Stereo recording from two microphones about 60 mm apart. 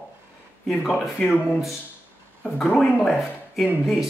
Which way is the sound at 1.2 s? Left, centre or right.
Left.